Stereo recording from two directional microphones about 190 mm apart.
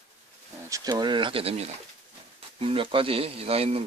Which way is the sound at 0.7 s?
20° right (ahead or behind).